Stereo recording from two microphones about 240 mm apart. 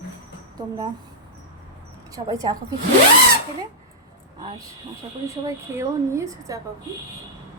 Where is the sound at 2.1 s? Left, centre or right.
Centre.